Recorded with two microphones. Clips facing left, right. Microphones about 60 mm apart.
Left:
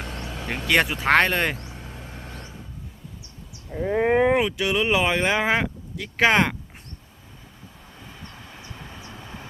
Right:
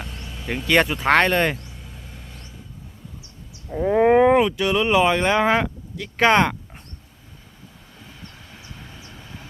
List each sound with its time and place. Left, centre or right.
0.0 s vehicle: left
0.7 s speech: centre
1.6 s vehicle: left
3.7 s speech: centre
8.2 s vehicle: centre